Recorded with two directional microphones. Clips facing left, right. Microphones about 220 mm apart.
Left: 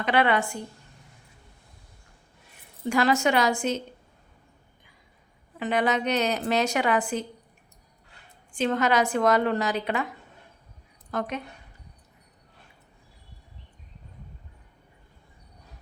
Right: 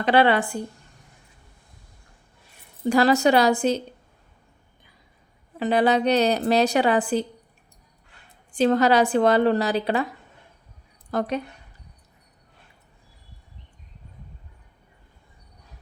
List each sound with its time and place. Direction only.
0.0 s a woman's voice: 30° right (ahead or behind)
2.9 s a woman's voice: 35° right (ahead or behind)
5.5 s a woman's voice: 35° right (ahead or behind)
8.5 s a woman's voice: 35° right (ahead or behind)
11.1 s a woman's voice: 35° right (ahead or behind)